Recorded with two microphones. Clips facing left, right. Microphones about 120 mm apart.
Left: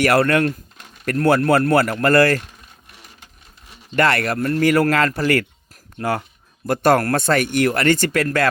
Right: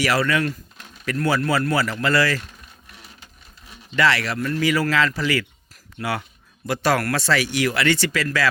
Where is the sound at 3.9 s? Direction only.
50° left (ahead or behind).